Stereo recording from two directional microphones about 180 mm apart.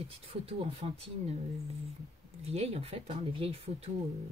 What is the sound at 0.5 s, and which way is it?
Speech, 35° right (ahead or behind).